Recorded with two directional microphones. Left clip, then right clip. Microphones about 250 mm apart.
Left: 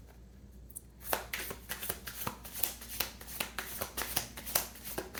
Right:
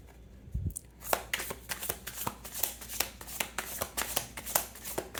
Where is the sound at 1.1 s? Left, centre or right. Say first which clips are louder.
Right 4 dB; right.